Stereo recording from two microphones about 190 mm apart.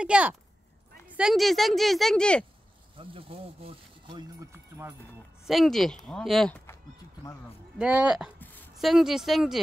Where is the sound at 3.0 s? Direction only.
30° right (ahead or behind).